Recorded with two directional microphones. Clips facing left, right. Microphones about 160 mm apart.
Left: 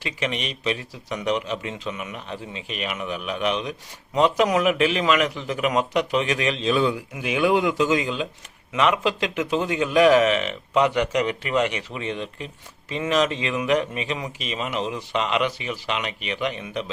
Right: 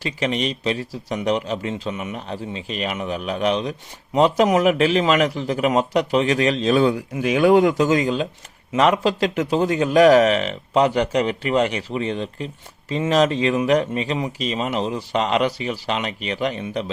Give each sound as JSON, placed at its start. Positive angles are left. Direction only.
{"t": 0.0, "sound": "speech", "side_deg": -35}